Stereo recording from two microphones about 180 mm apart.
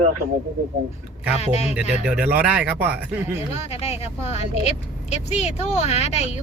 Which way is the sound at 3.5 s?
35° left (ahead or behind).